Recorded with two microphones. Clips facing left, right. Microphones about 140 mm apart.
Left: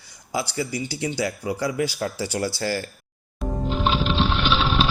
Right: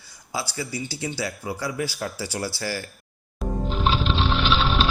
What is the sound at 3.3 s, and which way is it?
Music, centre (ahead or behind).